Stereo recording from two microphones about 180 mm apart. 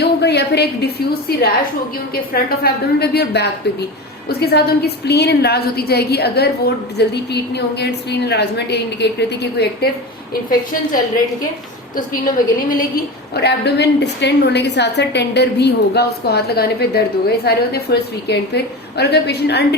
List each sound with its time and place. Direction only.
0.0 s a woman's voice: 65° left (ahead or behind)
11.9 s a woman's voice: 50° left (ahead or behind)
13.3 s a woman's voice: 65° left (ahead or behind)